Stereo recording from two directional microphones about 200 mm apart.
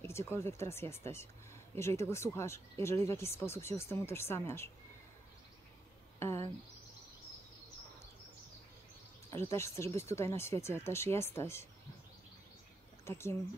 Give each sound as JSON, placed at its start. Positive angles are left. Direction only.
{"t": 0.0, "sound": "speech", "side_deg": 15}
{"t": 6.1, "sound": "a sound", "side_deg": 15}
{"t": 9.5, "sound": "speech", "side_deg": 15}
{"t": 13.0, "sound": "speech", "side_deg": 15}